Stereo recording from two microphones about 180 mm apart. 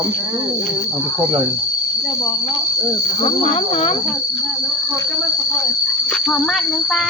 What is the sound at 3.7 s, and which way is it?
Speech, 30° left (ahead or behind).